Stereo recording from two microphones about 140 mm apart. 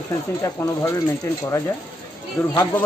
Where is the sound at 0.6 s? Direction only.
15° left (ahead or behind).